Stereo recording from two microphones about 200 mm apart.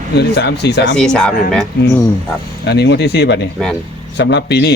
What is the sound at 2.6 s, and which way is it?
Speech, 55° left (ahead or behind).